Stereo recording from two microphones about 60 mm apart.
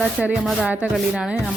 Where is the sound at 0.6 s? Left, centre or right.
Right.